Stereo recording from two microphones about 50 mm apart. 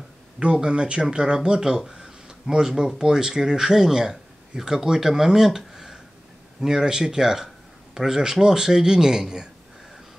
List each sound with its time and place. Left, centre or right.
0.4 s speech: right